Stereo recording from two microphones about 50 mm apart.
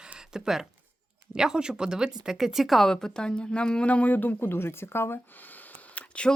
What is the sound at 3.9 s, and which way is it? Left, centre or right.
Speech, left.